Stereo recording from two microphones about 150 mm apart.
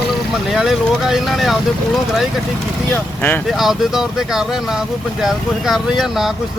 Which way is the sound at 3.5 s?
Centre (ahead or behind).